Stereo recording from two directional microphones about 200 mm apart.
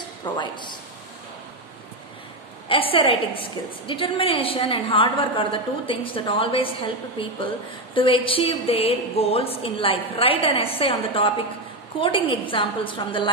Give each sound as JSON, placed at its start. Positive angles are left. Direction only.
{"t": 0.2, "sound": "a woman's voice", "side_deg": 20}
{"t": 2.7, "sound": "a woman's voice", "side_deg": 25}